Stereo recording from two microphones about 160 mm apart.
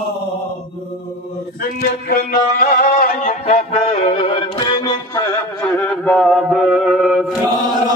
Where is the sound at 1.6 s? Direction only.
65° left (ahead or behind); by 5.2 s 25° left (ahead or behind).